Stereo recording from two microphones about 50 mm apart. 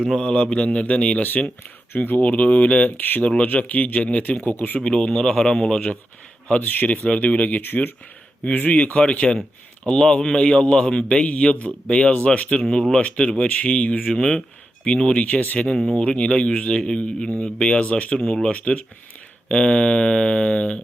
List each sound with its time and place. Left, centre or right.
0.2 s a man's voice: centre
2.0 s a man's voice: left
4.8 s a man's voice: centre
6.6 s speech: left
6.8 s a man's voice: left
12.7 s a man's voice: centre; by 18.1 s left
18.1 s a man's voice: centre